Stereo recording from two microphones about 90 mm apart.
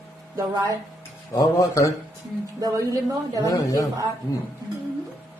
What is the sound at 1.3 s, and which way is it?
Speech, 35° left (ahead or behind).